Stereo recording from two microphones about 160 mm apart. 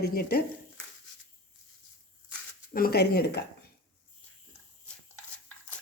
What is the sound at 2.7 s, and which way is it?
Speech, 75° left (ahead or behind).